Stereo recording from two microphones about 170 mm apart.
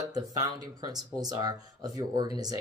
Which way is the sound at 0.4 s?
20° right (ahead or behind).